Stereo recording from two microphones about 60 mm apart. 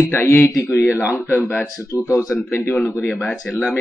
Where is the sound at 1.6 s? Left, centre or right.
Left.